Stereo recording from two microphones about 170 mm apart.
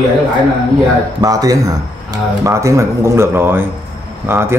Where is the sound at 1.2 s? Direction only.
20° right (ahead or behind).